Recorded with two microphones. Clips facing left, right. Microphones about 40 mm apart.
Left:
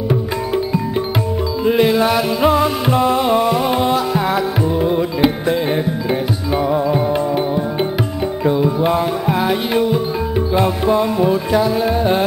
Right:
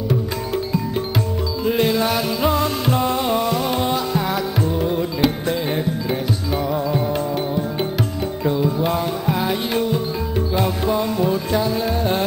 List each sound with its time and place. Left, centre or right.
1.6 s music: centre
8.5 s music: centre
8.9 s music: centre